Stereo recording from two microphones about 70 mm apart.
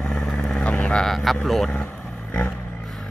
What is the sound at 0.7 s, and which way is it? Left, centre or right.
Vehicle, centre.